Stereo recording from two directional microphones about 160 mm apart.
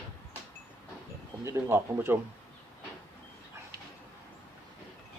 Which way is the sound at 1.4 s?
15° right (ahead or behind).